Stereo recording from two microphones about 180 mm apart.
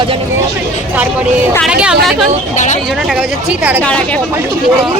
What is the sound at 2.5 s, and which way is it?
Speech, 45° left (ahead or behind).